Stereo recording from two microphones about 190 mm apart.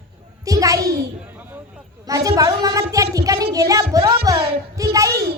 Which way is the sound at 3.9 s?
20° right (ahead or behind).